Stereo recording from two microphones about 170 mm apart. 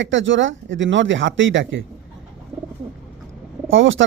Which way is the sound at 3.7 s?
90° right.